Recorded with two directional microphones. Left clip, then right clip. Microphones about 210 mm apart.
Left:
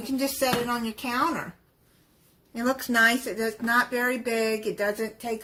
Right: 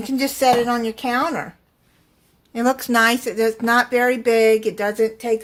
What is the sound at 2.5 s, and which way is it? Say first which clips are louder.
Speech: right 6 dB; 45° right (ahead or behind).